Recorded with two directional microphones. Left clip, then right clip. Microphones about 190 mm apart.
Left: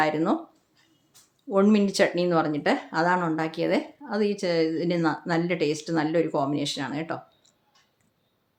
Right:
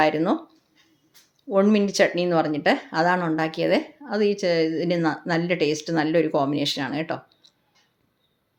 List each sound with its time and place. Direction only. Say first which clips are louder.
0.0 s speech: right 3 dB; 10° right (ahead or behind)
1.5 s speech: right 2 dB; centre (ahead or behind)